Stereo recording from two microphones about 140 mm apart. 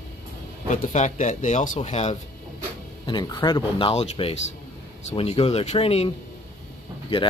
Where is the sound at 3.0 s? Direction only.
30° left (ahead or behind).